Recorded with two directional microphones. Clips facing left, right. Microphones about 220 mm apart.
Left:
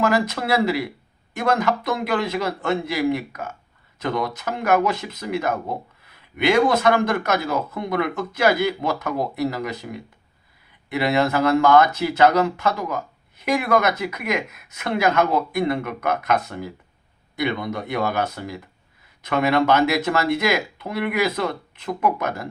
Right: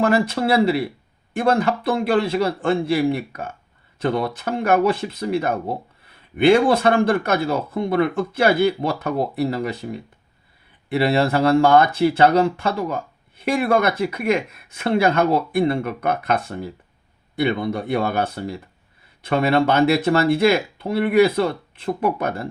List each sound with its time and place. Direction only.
0.0 s speech: 30° right (ahead or behind)